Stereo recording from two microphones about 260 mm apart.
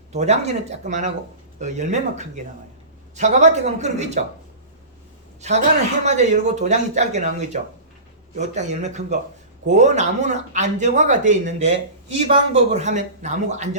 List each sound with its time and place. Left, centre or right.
0.1 s a man's voice: right
5.4 s a man's voice: right